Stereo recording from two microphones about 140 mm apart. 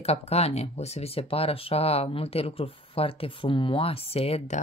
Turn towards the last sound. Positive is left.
turn(degrees=50)  # may be behind; listen again after turning